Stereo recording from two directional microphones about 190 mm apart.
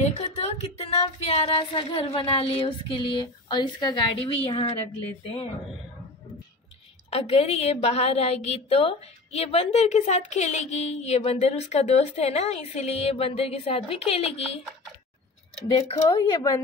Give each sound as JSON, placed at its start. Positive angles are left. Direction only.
{"t": 0.2, "sound": "female singing", "side_deg": 30}
{"t": 7.1, "sound": "a woman's voice", "side_deg": 30}
{"t": 15.7, "sound": "female singing", "side_deg": 20}